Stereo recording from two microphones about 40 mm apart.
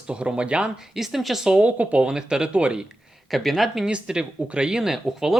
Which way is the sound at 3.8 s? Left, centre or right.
Right.